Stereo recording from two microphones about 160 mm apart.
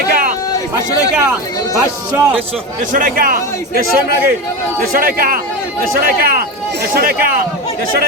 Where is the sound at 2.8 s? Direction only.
55° right (ahead or behind).